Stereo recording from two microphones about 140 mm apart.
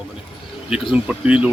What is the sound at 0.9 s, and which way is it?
Speech, 10° right (ahead or behind).